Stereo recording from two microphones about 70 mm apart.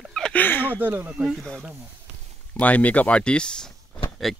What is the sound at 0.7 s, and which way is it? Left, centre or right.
Speech, right.